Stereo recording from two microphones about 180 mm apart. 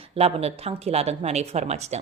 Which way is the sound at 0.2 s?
35° right (ahead or behind).